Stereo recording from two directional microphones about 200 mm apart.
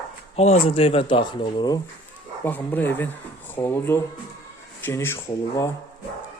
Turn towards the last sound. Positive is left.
turn(degrees=15)  # may be behind; listen again after turning